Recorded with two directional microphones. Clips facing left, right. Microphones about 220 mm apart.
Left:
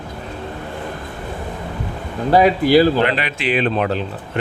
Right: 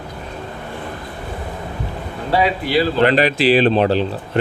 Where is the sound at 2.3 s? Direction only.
45° left (ahead or behind).